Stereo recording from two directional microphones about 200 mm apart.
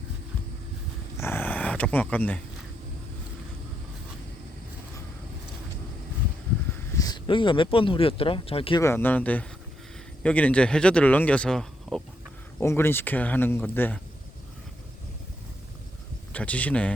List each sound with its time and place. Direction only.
1.1 s dog: 10° left (ahead or behind)
6.9 s speech: 20° left (ahead or behind)
8.8 s speech: 10° left (ahead or behind)
16.3 s speech: 5° left (ahead or behind)